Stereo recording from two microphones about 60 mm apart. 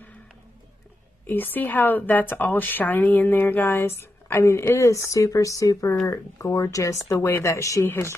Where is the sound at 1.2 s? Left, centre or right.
Left.